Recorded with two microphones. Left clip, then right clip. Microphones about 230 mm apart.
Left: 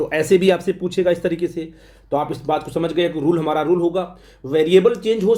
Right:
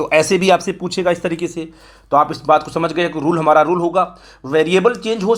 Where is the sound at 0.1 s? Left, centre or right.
Centre.